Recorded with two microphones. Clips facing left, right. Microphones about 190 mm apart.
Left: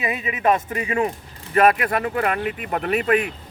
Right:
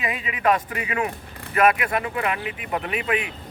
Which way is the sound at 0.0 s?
25° left (ahead or behind).